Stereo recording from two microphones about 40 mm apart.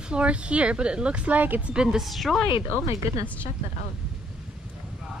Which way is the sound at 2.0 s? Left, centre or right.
Centre.